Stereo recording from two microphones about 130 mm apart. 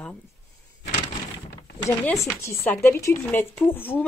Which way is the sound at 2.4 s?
20° left (ahead or behind).